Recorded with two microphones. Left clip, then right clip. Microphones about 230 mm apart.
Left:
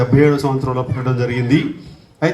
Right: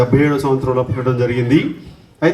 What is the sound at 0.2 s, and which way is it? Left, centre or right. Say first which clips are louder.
A man's voice: left 1 dB; left.